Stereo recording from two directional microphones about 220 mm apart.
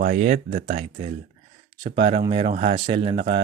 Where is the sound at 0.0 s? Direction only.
35° right (ahead or behind).